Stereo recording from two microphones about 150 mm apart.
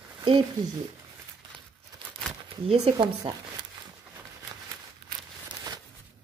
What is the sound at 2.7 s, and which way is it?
Speech, 45° right (ahead or behind).